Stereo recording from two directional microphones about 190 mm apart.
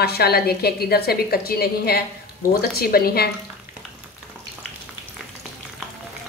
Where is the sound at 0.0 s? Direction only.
55° left (ahead or behind).